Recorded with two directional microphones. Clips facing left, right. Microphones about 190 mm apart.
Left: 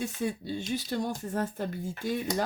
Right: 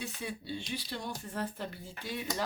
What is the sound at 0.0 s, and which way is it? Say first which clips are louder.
Speech: left 8 dB; 45° left (ahead or behind).